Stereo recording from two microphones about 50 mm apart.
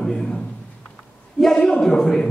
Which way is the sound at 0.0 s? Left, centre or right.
Centre.